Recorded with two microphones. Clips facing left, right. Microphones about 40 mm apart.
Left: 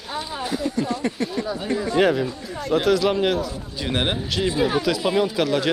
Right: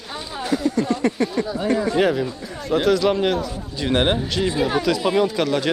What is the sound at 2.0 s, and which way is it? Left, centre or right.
Speech, centre.